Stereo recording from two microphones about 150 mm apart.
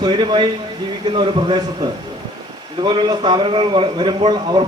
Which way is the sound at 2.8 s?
30° right (ahead or behind).